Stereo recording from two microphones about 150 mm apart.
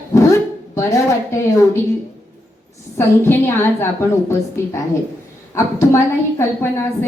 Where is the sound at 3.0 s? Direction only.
15° left (ahead or behind).